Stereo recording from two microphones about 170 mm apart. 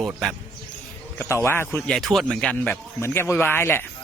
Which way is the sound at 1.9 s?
Centre (ahead or behind).